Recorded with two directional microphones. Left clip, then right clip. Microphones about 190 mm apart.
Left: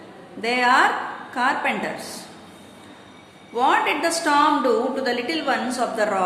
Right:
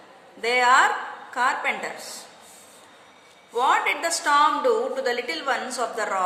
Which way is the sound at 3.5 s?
25° right (ahead or behind).